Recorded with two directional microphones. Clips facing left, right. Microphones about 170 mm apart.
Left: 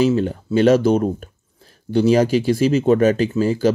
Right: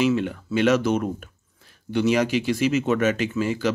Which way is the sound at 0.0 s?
35° left (ahead or behind).